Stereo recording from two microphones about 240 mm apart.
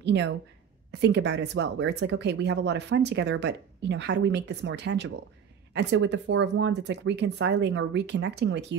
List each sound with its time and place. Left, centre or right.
0.0 s speech: right